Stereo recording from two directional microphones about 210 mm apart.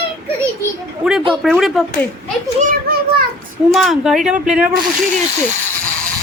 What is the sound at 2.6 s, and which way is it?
Children playing, 45° right (ahead or behind).